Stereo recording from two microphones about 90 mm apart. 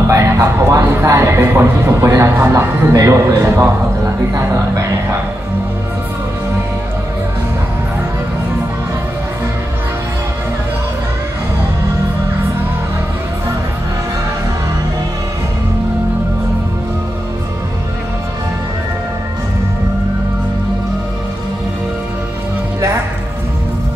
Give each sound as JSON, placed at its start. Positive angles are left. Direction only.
{"t": 0.1, "sound": "music", "side_deg": -30}
{"t": 2.3, "sound": "a man's voice", "side_deg": -25}